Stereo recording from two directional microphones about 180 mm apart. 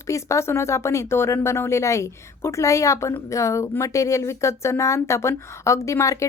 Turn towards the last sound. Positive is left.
turn(degrees=15)  # may be behind; listen again after turning